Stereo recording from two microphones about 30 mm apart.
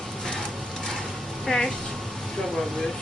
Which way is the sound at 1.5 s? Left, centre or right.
Centre.